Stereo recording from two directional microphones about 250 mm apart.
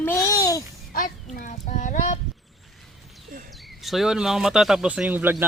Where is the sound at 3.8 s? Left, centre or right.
Centre.